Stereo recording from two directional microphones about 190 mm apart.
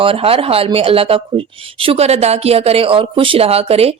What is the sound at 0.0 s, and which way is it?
Speech, 30° right (ahead or behind).